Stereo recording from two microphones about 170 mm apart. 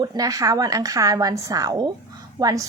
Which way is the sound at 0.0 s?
20° right (ahead or behind).